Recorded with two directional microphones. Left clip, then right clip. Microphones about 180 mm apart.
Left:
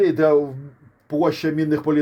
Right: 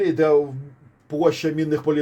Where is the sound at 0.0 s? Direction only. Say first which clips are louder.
Left 1 dB; 40° left (ahead or behind).